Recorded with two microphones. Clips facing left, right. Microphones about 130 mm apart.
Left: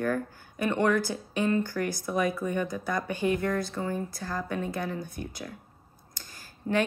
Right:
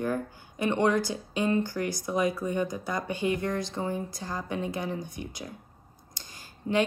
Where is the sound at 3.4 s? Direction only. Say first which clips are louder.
Left 1 dB; 20° right (ahead or behind).